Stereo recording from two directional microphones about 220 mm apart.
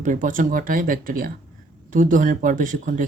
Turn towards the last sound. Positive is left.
turn(degrees=-35)  # may be behind; listen again after turning